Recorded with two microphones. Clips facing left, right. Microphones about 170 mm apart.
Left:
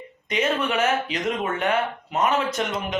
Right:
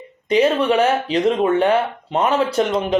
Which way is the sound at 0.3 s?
35° right (ahead or behind).